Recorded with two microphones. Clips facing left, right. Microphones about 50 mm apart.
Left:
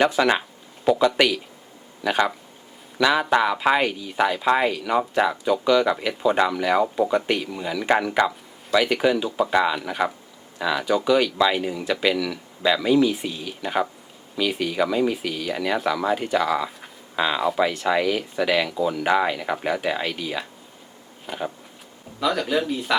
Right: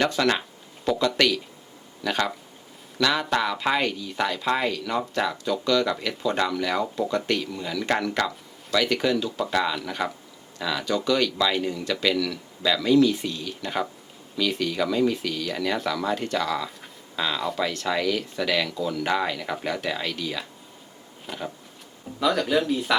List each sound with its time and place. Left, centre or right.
0.0 s speech: centre
22.2 s speech: centre